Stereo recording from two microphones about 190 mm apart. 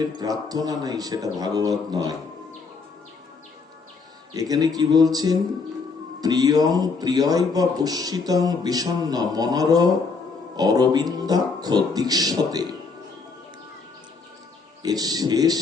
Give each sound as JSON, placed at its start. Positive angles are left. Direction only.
{"t": 0.2, "sound": "a man's voice", "side_deg": -20}
{"t": 4.4, "sound": "a man's voice", "side_deg": -20}
{"t": 14.8, "sound": "a man's voice", "side_deg": -20}